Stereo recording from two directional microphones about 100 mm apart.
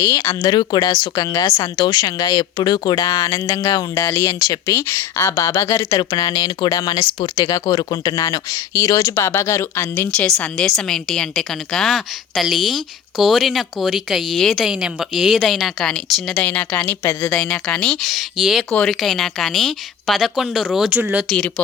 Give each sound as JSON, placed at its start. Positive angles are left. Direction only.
{"t": 0.0, "sound": "speech", "side_deg": 30}
{"t": 0.3, "sound": "a woman's voice", "side_deg": 45}
{"t": 10.2, "sound": "a woman's voice", "side_deg": 10}
{"t": 20.9, "sound": "speech", "side_deg": -15}
{"t": 21.2, "sound": "speech", "side_deg": 10}